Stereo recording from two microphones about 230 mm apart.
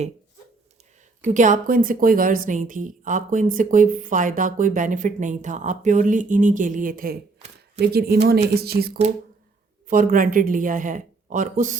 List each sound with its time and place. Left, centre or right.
1.2 s a woman's voice: right